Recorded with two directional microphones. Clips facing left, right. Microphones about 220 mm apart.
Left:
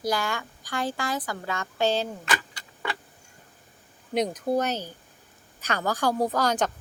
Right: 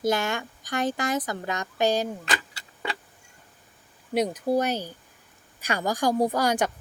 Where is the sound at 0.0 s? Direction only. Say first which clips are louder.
Right 3 dB; 20° right (ahead or behind).